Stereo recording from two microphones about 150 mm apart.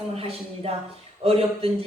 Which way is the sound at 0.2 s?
40° right (ahead or behind).